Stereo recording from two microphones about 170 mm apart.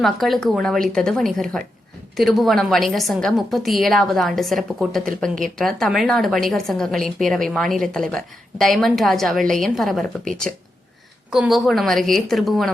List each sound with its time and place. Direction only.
0.0 s a woman's voice: centre (ahead or behind)